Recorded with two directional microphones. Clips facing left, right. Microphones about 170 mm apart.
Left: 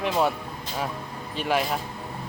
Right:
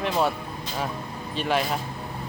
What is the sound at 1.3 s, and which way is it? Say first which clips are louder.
Speech: even; 10° left (ahead or behind).